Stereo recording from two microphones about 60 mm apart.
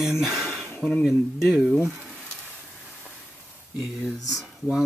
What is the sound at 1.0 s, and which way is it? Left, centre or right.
Speech, centre.